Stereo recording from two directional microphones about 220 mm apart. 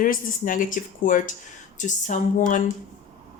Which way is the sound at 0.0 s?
40° left (ahead or behind).